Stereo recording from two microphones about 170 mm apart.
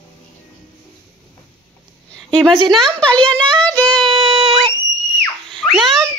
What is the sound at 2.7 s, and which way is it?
Speech, 5° left (ahead or behind).